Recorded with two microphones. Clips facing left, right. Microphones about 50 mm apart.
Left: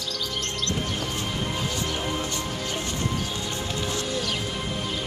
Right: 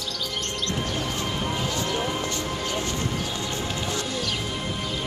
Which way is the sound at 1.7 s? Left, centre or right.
Right.